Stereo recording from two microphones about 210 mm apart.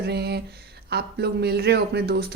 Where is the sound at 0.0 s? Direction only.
50° right (ahead or behind).